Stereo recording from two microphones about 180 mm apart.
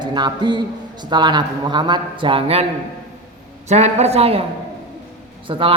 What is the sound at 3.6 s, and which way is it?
Speech, 40° right (ahead or behind).